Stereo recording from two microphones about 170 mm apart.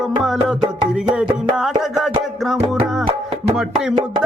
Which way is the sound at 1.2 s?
5° right (ahead or behind).